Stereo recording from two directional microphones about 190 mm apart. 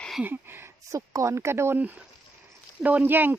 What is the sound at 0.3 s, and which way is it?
Speech, 10° right (ahead or behind).